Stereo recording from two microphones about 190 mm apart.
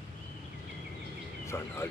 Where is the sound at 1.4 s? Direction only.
15° left (ahead or behind).